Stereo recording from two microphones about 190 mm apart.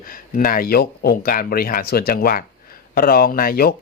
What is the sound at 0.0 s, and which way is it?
Speech, 50° left (ahead or behind).